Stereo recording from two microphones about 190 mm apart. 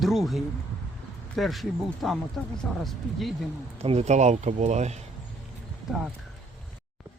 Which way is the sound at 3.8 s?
35° right (ahead or behind).